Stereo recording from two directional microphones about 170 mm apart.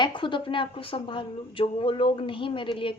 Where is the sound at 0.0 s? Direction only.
30° left (ahead or behind).